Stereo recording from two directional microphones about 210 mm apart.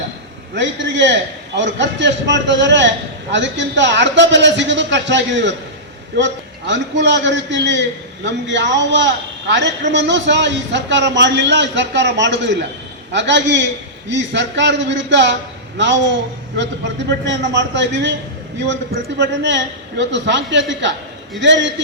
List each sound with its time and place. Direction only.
0.5 s a man's voice: 55° right (ahead or behind)
17.1 s a man's voice: 55° right (ahead or behind)
19.2 s a man's voice: 55° right (ahead or behind)